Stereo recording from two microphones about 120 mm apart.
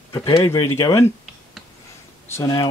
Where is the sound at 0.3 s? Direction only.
30° left (ahead or behind).